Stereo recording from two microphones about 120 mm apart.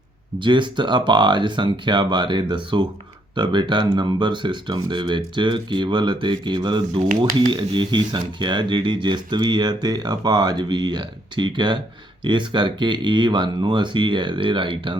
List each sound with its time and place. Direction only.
0.3 s speech: 40° right (ahead or behind)